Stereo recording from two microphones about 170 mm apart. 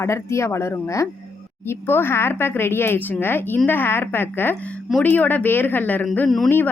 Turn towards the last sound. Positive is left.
turn(degrees=5)  # may be behind; listen again after turning